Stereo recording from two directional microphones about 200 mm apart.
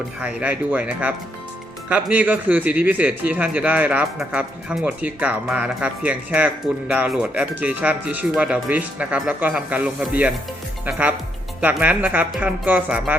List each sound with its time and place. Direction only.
0.2 s a man's voice: 5° right (ahead or behind)